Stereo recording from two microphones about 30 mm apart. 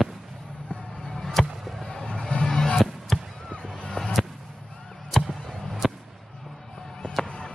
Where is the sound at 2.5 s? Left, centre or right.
Centre.